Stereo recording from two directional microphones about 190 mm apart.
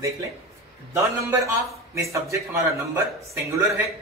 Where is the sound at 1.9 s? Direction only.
15° right (ahead or behind).